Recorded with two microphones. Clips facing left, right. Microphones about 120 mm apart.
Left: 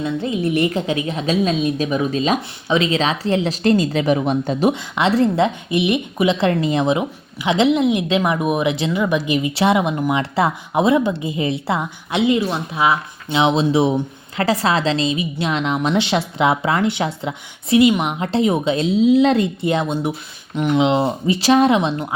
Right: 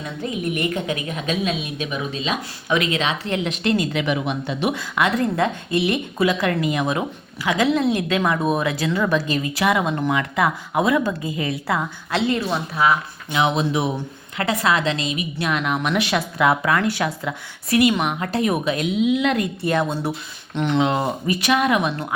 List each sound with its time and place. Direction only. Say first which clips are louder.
0.0 s a woman's voice: left 6 dB; 30° left (ahead or behind)
2.6 s a woman's voice: left 3 dB; 30° left (ahead or behind)
4.7 s a woman's voice: left 3 dB; 25° left (ahead or behind)
10.2 s a woman's voice: left 2 dB; 25° left (ahead or behind)
20.6 s speech: left 3 dB; 5° left (ahead or behind)
21.2 s a woman's voice: left 6 dB; 30° left (ahead or behind)